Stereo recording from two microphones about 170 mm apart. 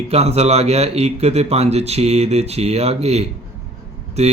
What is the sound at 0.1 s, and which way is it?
Speech, 40° right (ahead or behind).